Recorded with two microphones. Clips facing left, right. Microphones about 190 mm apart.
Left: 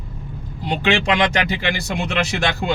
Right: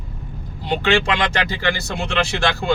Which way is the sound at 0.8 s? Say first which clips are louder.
Left 1 dB; 20° left (ahead or behind).